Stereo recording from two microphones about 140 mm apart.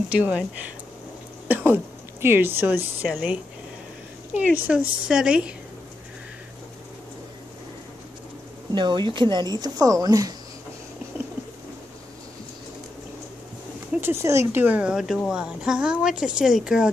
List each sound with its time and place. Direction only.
0.1 s speech: 10° right (ahead or behind)
4.3 s speech: 10° right (ahead or behind)
8.7 s speech: 35° right (ahead or behind)
14.0 s speech: 20° right (ahead or behind); by 16.9 s 5° right (ahead or behind)